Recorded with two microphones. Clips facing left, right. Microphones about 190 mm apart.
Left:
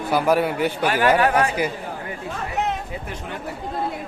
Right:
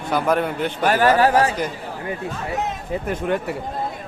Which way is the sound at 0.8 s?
40° right (ahead or behind).